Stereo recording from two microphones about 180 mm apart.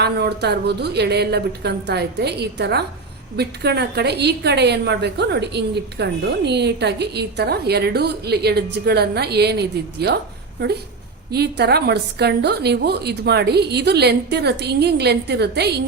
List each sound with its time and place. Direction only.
0.0 s a woman's voice: 65° right (ahead or behind)
11.3 s a woman's voice: 65° right (ahead or behind)